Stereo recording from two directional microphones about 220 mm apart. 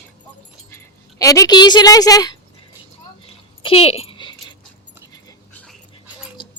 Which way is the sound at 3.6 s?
25° left (ahead or behind).